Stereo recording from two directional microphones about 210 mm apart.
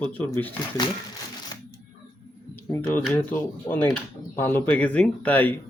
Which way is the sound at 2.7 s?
10° left (ahead or behind).